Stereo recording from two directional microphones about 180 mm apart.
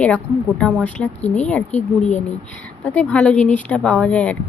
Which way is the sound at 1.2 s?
40° left (ahead or behind).